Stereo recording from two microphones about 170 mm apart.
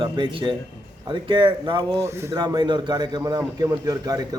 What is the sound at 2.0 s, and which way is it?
A man's voice, 15° right (ahead or behind).